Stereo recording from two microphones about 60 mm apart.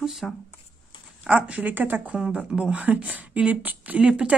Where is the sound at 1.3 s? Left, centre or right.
Right.